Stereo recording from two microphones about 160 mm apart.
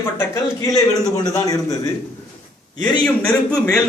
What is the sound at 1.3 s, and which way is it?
Speech, 20° left (ahead or behind).